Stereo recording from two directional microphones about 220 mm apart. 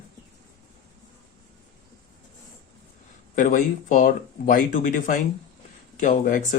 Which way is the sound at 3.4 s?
35° left (ahead or behind).